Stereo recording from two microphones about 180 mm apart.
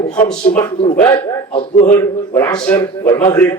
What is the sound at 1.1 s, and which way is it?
Speech, 30° left (ahead or behind).